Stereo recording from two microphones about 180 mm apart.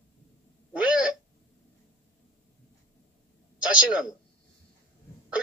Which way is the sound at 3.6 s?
5° right (ahead or behind).